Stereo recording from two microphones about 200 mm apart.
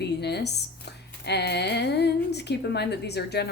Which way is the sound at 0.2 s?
55° left (ahead or behind).